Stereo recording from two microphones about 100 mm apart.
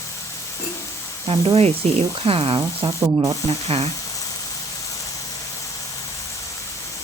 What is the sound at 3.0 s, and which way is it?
Spray, 30° right (ahead or behind).